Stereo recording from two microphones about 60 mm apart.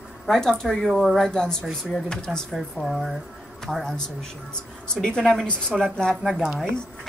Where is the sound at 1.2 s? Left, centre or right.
Centre.